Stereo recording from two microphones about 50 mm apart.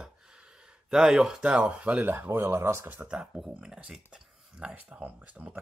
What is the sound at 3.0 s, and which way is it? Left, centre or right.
Speech, centre.